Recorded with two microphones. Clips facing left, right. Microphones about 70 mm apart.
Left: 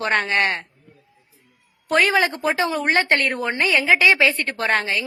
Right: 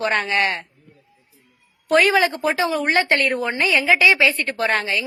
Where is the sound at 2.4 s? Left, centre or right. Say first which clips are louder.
Right 1 dB; left.